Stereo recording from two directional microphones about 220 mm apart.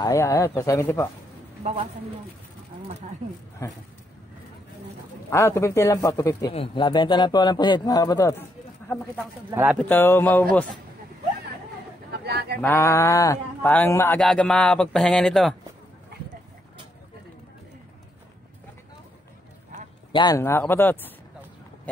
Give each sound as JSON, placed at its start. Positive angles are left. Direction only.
{"t": 0.0, "sound": "speech", "side_deg": 15}
{"t": 5.3, "sound": "speech", "side_deg": 10}
{"t": 9.1, "sound": "speech", "side_deg": -10}
{"t": 9.8, "sound": "speech", "side_deg": 10}
{"t": 12.3, "sound": "speech", "side_deg": -50}
{"t": 12.6, "sound": "speech", "side_deg": 10}
{"t": 20.1, "sound": "speech", "side_deg": 20}